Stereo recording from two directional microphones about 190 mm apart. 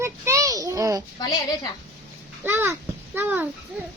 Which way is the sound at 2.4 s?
10° right (ahead or behind).